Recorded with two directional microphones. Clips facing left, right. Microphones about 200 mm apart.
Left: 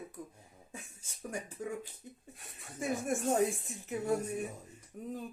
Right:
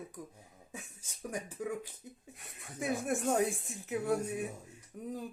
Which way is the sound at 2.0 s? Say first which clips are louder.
Even; 5° right (ahead or behind).